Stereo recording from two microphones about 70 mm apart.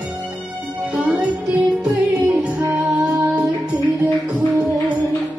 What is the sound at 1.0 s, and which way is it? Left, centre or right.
Music, centre.